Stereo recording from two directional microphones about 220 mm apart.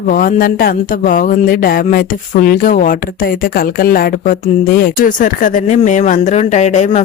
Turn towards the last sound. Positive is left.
turn(degrees=30)  # may be behind; listen again after turning